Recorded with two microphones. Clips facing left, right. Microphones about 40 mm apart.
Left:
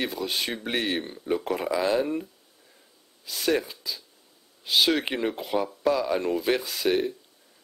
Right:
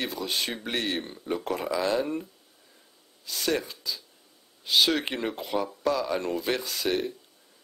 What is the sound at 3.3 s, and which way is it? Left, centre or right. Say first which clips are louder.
Speech: left 3 dB; centre.